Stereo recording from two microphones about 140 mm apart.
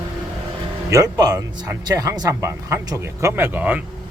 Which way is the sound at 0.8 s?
25° right (ahead or behind).